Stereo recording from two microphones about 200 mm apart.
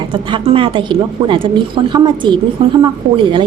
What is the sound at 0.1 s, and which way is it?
A woman's voice, 25° right (ahead or behind).